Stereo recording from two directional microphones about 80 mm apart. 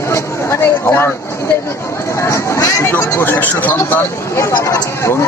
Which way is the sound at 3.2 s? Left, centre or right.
Left.